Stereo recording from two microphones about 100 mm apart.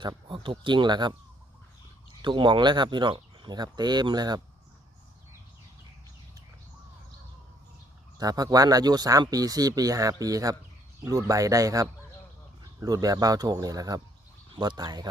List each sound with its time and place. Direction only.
0.0 s speech: 50° right (ahead or behind)
2.2 s speech: 55° right (ahead or behind)
8.2 s speech: 40° right (ahead or behind)